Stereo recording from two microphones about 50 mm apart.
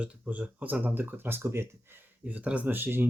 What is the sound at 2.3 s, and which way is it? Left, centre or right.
Speech, right.